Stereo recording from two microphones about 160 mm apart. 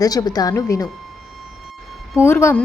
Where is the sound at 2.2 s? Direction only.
15° left (ahead or behind).